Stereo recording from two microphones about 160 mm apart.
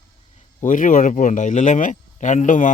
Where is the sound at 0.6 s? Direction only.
55° left (ahead or behind).